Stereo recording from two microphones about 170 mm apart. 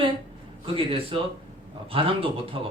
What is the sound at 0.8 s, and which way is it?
A man's voice, 35° right (ahead or behind).